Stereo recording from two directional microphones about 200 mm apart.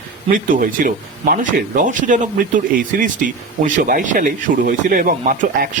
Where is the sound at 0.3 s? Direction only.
40° right (ahead or behind).